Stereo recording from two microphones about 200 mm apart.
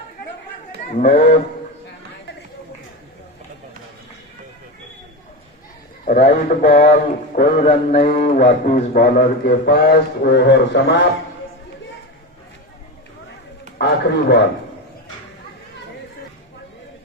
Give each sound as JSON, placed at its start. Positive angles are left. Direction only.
{"t": 0.9, "sound": "a man's voice", "side_deg": 35}
{"t": 6.1, "sound": "a man's voice", "side_deg": 45}
{"t": 13.7, "sound": "a sound", "side_deg": 55}